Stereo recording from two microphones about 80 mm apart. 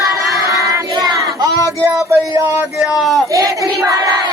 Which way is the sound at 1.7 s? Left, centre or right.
Right.